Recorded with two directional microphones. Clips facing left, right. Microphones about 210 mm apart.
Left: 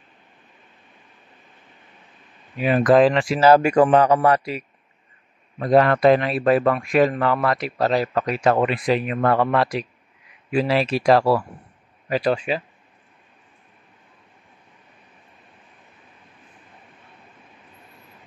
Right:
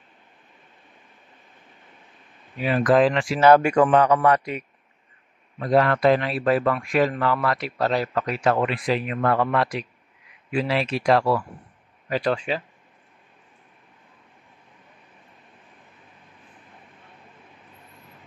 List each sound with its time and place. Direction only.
2.5 s speech: 15° left (ahead or behind)
3.3 s speech: 5° left (ahead or behind)
3.6 s a man's voice: 35° left (ahead or behind)
5.7 s speech: 20° left (ahead or behind)
12.1 s speech: 10° left (ahead or behind)